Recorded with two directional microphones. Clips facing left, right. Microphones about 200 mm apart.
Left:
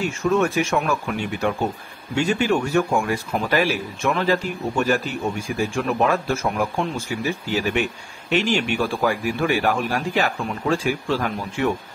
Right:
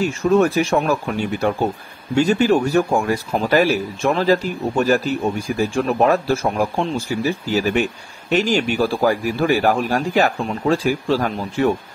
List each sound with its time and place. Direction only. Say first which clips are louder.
0.2 s speech: right 4 dB; 35° right (ahead or behind)